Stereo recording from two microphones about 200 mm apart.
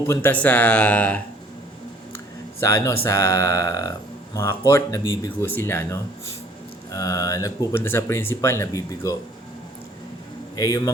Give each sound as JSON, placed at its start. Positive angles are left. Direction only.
{"t": 0.1, "sound": "speech", "side_deg": 10}
{"t": 10.5, "sound": "speech", "side_deg": 20}